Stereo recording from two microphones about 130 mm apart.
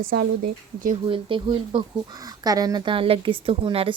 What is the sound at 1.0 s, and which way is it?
Speech, 40° right (ahead or behind).